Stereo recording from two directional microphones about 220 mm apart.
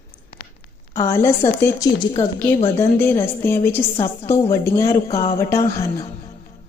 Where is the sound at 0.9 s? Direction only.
15° left (ahead or behind).